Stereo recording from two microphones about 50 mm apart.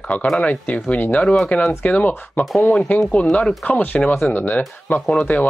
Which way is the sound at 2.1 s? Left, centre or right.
Left.